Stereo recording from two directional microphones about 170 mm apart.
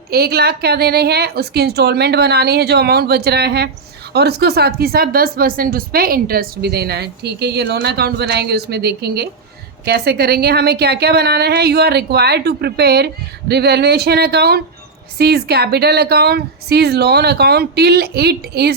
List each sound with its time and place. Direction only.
0.1 s speech: 70° right (ahead or behind)